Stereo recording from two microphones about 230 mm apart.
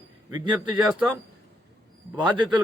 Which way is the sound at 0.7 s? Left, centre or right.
Centre.